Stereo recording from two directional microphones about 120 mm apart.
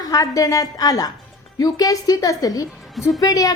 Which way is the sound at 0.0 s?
30° left (ahead or behind).